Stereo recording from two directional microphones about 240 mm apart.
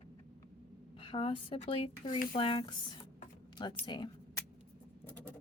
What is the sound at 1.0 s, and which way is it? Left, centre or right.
Speech, left.